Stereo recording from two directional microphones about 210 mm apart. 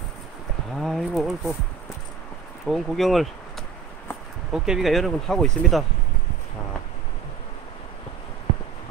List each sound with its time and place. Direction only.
0.7 s speech: centre (ahead or behind)
2.6 s speech: centre (ahead or behind)
4.5 s speech: 5° right (ahead or behind)